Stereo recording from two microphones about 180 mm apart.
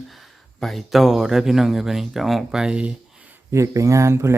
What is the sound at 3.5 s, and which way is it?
Speech, 15° right (ahead or behind).